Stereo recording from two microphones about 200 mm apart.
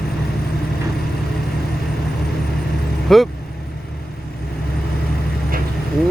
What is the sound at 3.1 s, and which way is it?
Speech, centre (ahead or behind).